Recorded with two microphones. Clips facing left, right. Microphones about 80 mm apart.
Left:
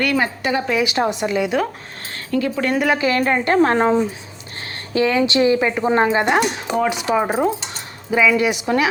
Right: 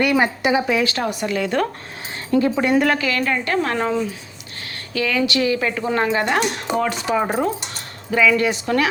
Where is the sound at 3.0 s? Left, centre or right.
Left.